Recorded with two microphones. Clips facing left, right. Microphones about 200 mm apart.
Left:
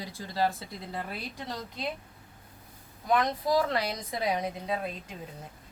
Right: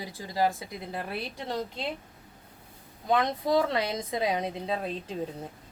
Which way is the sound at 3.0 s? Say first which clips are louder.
Right 1 dB; 25° right (ahead or behind).